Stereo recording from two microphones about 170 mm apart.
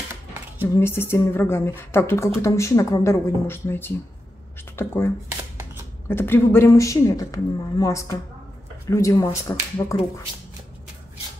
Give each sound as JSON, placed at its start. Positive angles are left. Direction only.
{"t": 0.7, "sound": "speech", "side_deg": 15}